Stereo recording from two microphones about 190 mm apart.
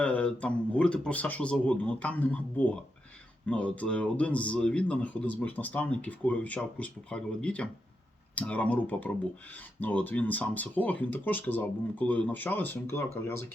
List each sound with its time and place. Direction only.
0.0 s a man's voice: 5° left (ahead or behind)